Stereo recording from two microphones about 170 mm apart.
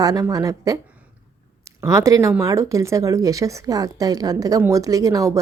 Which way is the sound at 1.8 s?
20° right (ahead or behind).